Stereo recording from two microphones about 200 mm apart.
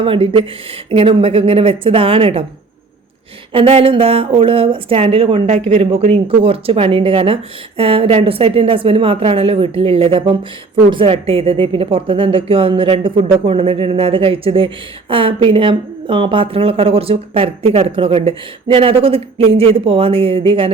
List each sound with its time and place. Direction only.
0.0 s a woman's voice: 25° right (ahead or behind)
3.5 s a woman's voice: 25° right (ahead or behind)